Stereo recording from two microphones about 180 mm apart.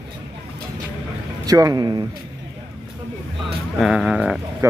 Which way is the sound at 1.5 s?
20° right (ahead or behind).